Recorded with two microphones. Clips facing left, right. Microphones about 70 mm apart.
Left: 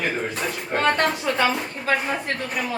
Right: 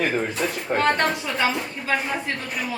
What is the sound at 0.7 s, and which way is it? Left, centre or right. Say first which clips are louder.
Speech: right 2 dB; centre.